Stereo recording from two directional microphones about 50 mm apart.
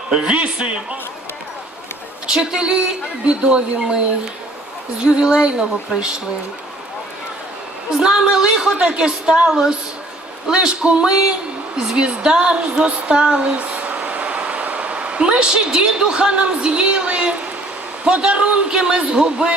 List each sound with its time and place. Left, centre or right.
0.1 s a man's voice: right
2.2 s a woman's voice: centre
5.0 s a woman's voice: centre
7.9 s a woman's voice: centre
13.6 s a sound: right
18.0 s a man's voice: centre